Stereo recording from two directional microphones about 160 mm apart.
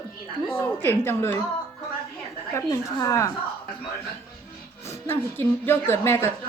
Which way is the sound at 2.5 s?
20° left (ahead or behind).